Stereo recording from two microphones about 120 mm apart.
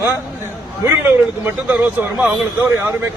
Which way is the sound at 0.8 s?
20° right (ahead or behind).